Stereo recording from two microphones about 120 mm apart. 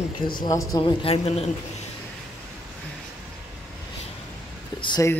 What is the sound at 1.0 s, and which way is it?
Speech, 60° left (ahead or behind).